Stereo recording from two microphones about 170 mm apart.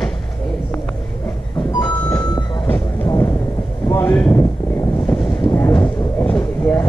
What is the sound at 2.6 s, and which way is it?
Music, 10° left (ahead or behind).